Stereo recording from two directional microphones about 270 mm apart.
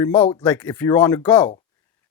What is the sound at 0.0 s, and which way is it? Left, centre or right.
Speech, centre.